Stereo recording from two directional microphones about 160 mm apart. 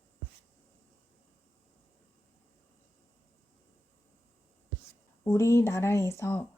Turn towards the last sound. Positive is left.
turn(degrees=15)  # may be behind; listen again after turning